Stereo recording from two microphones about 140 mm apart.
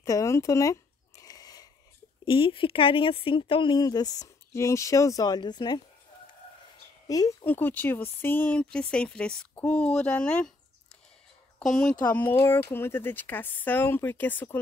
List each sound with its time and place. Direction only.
0.0 s a sound: 25° left (ahead or behind)
2.2 s speech: 40° left (ahead or behind)
7.1 s speech: 25° left (ahead or behind)
7.4 s speech: 15° left (ahead or behind)
11.8 s speech: 10° left (ahead or behind)